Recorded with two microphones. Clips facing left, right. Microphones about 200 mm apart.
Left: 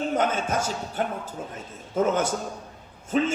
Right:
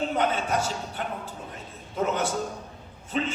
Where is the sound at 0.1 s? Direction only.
45° left (ahead or behind).